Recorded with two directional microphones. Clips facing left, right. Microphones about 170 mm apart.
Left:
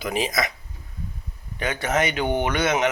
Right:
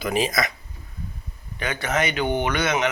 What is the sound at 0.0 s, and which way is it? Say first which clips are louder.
Speech: right 2 dB; 15° left (ahead or behind).